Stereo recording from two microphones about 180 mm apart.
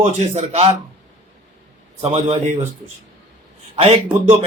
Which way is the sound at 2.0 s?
35° right (ahead or behind).